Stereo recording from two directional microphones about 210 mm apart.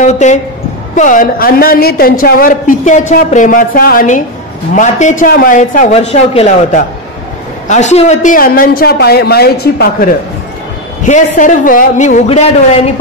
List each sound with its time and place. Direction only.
0.0 s a man's voice: 35° left (ahead or behind)
11.1 s a man's voice: 35° left (ahead or behind)